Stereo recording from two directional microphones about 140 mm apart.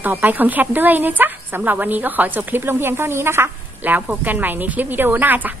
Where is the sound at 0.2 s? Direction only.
10° right (ahead or behind).